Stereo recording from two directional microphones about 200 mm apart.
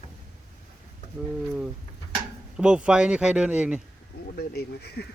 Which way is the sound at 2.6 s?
5° right (ahead or behind).